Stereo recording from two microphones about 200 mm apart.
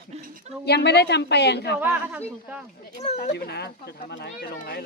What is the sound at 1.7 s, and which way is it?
Speech, 10° right (ahead or behind).